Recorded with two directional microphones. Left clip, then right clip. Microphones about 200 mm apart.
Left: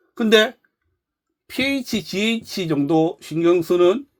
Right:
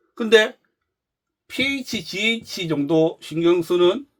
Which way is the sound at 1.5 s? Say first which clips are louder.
Left 1 dB; 25° left (ahead or behind).